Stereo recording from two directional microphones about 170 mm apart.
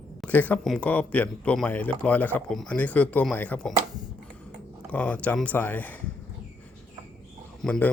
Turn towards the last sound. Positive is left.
turn(degrees=5)  # may be behind; listen again after turning